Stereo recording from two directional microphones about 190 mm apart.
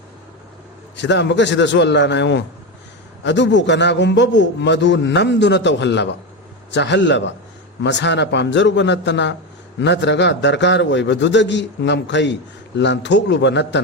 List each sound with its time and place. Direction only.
0.9 s a man's voice: 70° left (ahead or behind)